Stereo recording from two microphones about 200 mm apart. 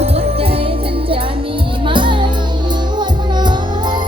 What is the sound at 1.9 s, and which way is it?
Music, 25° right (ahead or behind).